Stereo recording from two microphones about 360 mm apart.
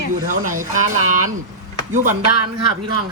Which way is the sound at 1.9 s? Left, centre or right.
Right.